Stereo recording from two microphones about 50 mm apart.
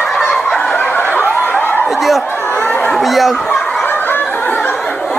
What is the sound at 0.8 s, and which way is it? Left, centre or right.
Snicker, left.